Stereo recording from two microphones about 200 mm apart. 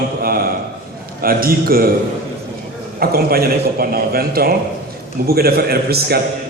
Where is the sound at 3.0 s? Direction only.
50° right (ahead or behind).